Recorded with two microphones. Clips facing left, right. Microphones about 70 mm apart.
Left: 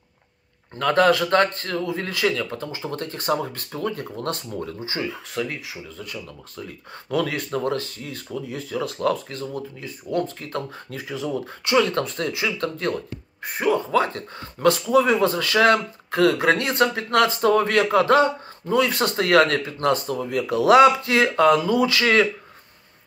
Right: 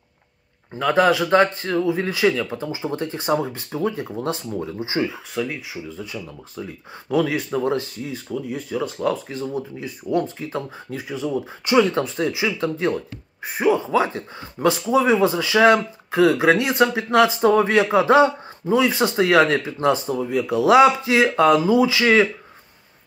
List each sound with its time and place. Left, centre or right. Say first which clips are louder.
0.7 s speech: right 1 dB; centre
4.7 s speech: right 5 dB; centre
5.3 s speech: right 2 dB; centre